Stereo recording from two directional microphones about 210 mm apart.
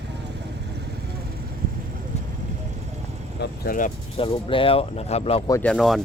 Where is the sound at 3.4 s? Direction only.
45° left (ahead or behind).